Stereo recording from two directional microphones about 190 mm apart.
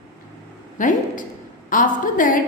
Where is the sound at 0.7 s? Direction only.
45° left (ahead or behind).